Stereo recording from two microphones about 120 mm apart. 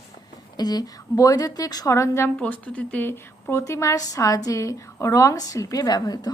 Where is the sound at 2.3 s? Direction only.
10° left (ahead or behind).